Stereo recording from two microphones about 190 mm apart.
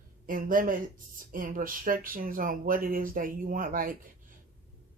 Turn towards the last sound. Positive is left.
turn(degrees=-45)  # may be behind; listen again after turning